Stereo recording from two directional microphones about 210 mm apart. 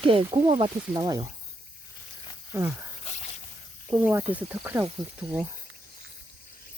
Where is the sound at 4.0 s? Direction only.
10° right (ahead or behind).